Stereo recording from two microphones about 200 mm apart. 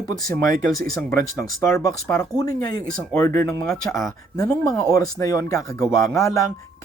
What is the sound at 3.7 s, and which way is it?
Speech, centre (ahead or behind).